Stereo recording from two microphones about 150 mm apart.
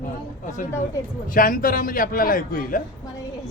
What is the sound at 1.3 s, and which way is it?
A man's voice, 65° left (ahead or behind).